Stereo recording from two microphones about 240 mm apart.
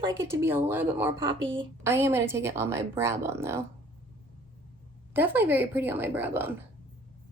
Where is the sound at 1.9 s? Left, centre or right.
Centre.